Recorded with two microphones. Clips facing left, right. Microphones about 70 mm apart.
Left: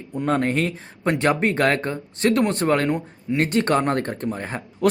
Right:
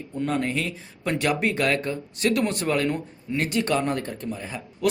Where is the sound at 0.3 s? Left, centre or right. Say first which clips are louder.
Left 6 dB; left.